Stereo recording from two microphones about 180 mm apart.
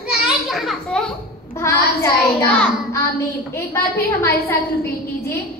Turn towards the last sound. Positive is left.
turn(degrees=15)  # may be behind; listen again after turning